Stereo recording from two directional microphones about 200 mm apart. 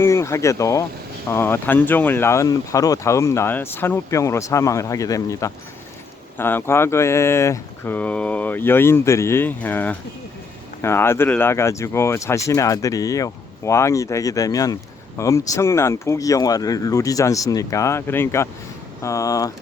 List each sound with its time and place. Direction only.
0.0 s speech: 15° left (ahead or behind)